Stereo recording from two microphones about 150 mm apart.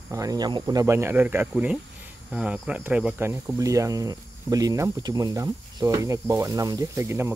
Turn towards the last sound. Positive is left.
turn(degrees=-15)  # may be behind; listen again after turning